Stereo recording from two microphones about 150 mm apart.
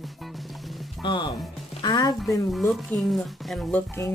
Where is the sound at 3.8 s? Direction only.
15° left (ahead or behind).